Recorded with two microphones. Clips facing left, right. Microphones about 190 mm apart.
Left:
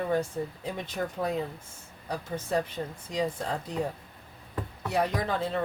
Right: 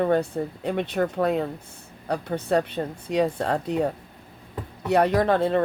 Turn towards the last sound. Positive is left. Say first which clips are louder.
# right 9 dB
turn(degrees=-60)  # may be behind; listen again after turning